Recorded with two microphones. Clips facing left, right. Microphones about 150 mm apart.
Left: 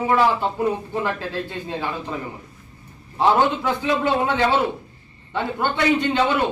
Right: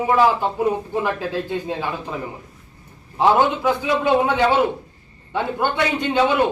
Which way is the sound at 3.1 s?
10° right (ahead or behind).